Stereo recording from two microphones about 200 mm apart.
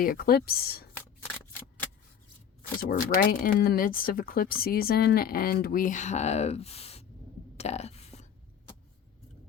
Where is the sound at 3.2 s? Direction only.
45° left (ahead or behind).